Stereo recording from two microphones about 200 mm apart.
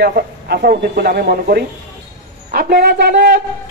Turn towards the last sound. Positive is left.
turn(degrees=-55)  # may be behind; listen again after turning